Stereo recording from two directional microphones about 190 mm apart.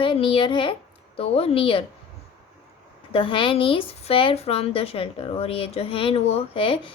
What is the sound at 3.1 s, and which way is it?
Speech, 25° left (ahead or behind).